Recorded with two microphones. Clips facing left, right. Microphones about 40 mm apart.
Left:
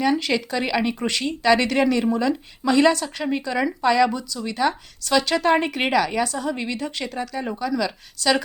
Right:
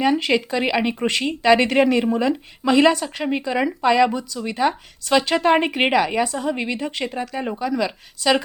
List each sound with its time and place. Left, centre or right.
0.0 s speech: centre